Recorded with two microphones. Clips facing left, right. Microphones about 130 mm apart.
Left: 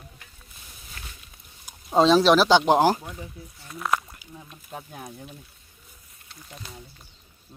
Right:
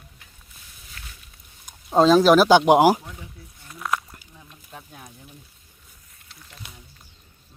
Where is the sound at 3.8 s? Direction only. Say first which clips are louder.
Left 1 dB; 5° left (ahead or behind).